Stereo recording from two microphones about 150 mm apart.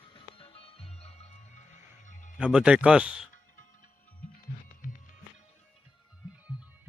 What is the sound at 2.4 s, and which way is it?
Speech, 5° right (ahead or behind).